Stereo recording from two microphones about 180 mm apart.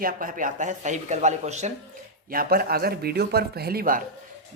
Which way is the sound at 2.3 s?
55° right (ahead or behind).